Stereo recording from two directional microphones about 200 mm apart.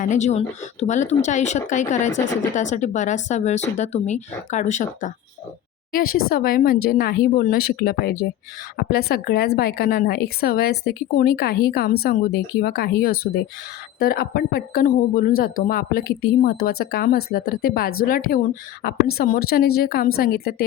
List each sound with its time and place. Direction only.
0.0 s speech: 35° left (ahead or behind)
2.0 s speech: 65° left (ahead or behind)
2.6 s speech: 35° left (ahead or behind)